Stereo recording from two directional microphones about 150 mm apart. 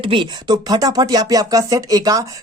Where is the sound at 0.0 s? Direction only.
35° right (ahead or behind).